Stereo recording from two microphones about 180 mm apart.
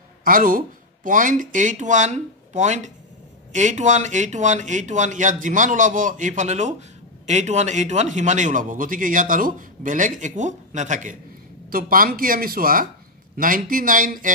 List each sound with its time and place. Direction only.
0.2 s a man's voice: 50° right (ahead or behind)